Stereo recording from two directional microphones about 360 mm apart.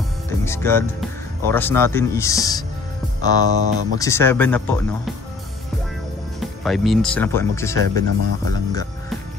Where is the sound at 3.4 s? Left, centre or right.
Right.